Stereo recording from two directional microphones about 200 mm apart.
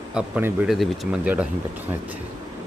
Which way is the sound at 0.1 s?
5° right (ahead or behind).